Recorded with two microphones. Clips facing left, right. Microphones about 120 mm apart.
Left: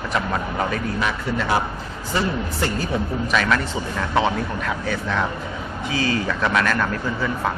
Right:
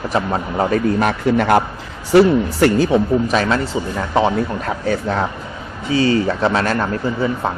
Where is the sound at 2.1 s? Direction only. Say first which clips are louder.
Right 12 dB; 75° right (ahead or behind).